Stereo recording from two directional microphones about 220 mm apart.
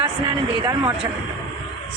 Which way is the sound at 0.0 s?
15° right (ahead or behind).